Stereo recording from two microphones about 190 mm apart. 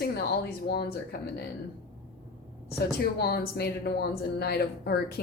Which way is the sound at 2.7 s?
55° left (ahead or behind).